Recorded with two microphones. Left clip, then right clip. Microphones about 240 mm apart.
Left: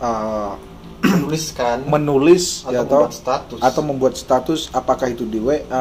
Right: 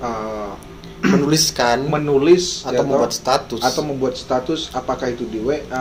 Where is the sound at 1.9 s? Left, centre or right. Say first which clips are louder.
Left 4 dB; left.